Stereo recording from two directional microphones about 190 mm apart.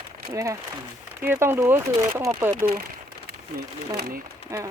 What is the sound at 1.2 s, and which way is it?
Speech, 10° right (ahead or behind).